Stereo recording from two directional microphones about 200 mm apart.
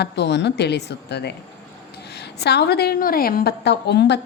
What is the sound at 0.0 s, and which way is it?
A woman's voice, 60° left (ahead or behind).